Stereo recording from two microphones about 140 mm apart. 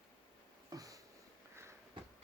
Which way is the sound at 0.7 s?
25° right (ahead or behind).